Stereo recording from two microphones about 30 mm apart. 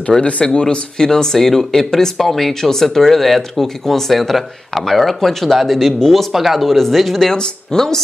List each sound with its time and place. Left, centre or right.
0.2 s speech: left
0.9 s speech: centre
2.1 s speech: centre
5.9 s speech: centre
6.3 s speech: centre